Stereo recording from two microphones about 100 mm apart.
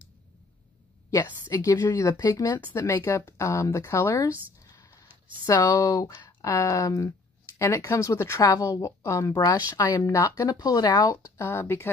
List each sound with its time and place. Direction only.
1.1 s speech: 30° left (ahead or behind)
2.5 s speech: 25° left (ahead or behind)
4.6 s a sound: 35° left (ahead or behind)
5.5 s speech: 40° left (ahead or behind)
11.3 s speech: 25° left (ahead or behind)